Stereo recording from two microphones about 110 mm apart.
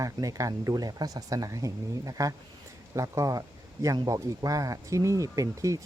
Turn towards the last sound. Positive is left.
turn(degrees=-30)  # may be behind; listen again after turning